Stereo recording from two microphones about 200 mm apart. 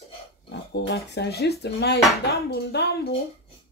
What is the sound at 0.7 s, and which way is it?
Speech, 55° left (ahead or behind).